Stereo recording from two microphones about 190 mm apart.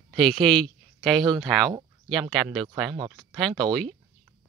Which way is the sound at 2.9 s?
20° right (ahead or behind).